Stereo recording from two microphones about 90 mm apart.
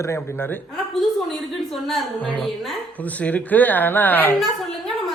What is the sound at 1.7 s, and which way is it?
Speech, centre (ahead or behind).